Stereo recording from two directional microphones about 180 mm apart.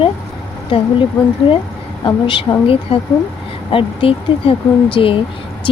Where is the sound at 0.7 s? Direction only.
30° left (ahead or behind).